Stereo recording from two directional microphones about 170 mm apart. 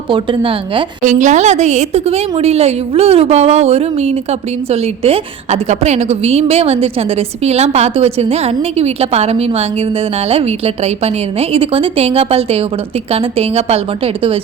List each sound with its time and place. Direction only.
0.1 s a woman's voice: 30° right (ahead or behind)
1.0 s a woman's voice: 45° right (ahead or behind)